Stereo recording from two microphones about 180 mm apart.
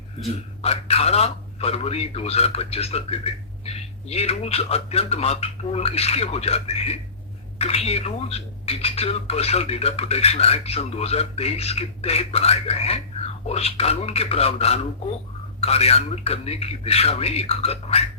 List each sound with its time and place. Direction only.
0.6 s speech: 35° left (ahead or behind)